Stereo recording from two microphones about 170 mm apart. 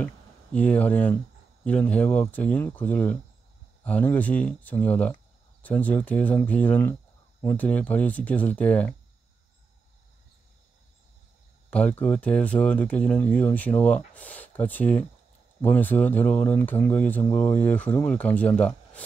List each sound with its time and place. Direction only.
0.0 s speech: 10° left (ahead or behind)
11.7 s speech: 10° left (ahead or behind)